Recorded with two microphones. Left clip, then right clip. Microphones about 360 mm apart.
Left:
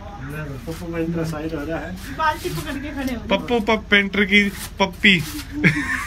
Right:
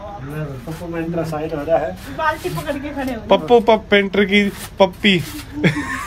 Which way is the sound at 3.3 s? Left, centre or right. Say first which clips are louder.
Right 8 dB; centre.